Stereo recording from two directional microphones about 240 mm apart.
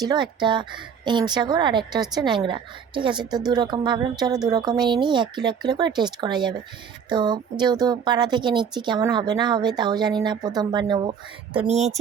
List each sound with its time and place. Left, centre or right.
0.0 s a woman's voice: centre